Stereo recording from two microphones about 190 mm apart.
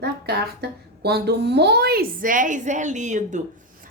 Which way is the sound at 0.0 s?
60° right (ahead or behind).